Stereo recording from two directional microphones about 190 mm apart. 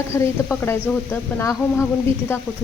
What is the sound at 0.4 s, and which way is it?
Speech, 10° left (ahead or behind).